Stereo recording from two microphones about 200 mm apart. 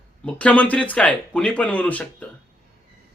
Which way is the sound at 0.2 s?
5° left (ahead or behind).